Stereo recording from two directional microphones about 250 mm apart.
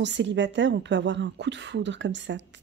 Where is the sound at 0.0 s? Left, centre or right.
Right.